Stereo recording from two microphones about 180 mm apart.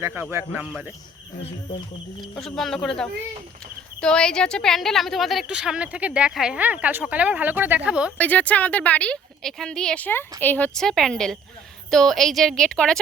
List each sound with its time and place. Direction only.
0.0 s speech: 10° right (ahead or behind)
2.2 s a woman's voice: centre (ahead or behind)
8.2 s a woman's voice: 10° left (ahead or behind)